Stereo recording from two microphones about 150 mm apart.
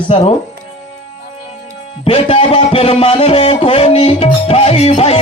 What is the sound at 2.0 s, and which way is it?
Music, 40° left (ahead or behind).